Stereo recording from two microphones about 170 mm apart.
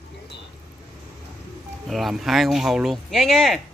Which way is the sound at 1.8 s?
Centre (ahead or behind).